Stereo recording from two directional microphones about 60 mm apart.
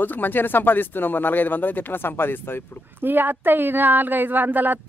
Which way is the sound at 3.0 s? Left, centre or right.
Right.